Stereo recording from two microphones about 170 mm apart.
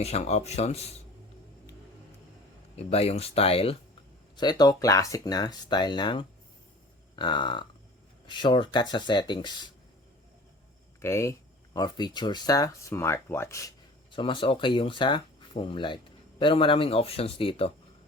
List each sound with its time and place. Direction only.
0.0 s speech: 40° left (ahead or behind)
2.7 s speech: 35° left (ahead or behind)
4.4 s speech: 25° left (ahead or behind)
11.0 s speech: 15° left (ahead or behind)
14.1 s speech: 30° left (ahead or behind)